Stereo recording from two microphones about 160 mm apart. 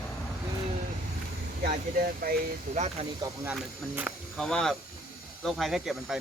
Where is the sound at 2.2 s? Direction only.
70° right (ahead or behind).